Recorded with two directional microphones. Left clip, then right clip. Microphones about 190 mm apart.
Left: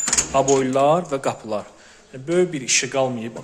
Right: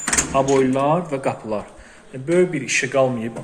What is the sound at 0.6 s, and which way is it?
A man's voice, 35° left (ahead or behind).